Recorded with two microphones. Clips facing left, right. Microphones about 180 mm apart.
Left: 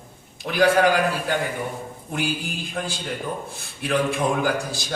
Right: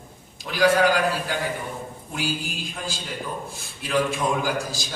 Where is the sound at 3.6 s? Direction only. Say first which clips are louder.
Left 1 dB; 60° left (ahead or behind).